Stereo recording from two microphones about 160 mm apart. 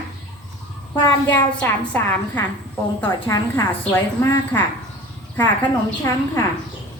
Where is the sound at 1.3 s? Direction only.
10° left (ahead or behind).